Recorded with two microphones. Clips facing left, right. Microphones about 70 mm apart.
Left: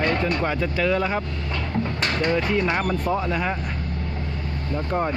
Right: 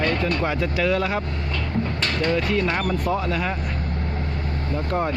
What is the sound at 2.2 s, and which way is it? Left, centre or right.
Speech, centre.